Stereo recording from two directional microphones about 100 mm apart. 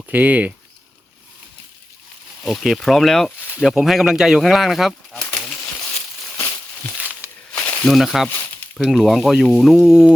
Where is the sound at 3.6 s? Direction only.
Centre (ahead or behind).